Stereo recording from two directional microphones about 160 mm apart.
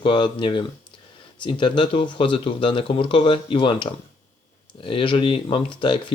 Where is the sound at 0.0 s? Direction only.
30° left (ahead or behind).